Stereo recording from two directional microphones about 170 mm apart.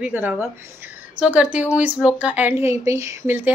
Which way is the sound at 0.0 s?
10° right (ahead or behind).